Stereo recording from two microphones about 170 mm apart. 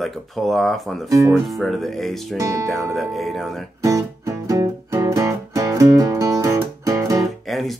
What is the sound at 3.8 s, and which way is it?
Music, 20° right (ahead or behind).